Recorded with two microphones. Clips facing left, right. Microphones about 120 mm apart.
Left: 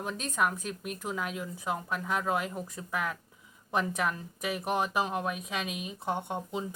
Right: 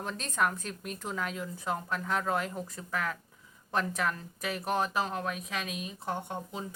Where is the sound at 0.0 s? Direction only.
5° left (ahead or behind).